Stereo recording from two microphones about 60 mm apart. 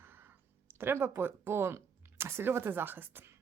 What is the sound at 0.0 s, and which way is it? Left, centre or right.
Speech, right.